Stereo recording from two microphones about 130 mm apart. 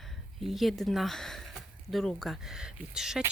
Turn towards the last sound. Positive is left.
turn(degrees=-5)  # may be behind; listen again after turning